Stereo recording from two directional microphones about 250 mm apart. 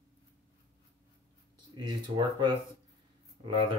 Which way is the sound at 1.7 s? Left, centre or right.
Centre.